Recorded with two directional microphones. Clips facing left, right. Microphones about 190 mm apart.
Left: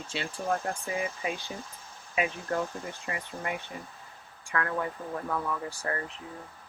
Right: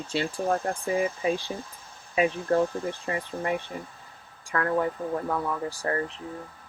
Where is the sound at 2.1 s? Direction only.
30° right (ahead or behind).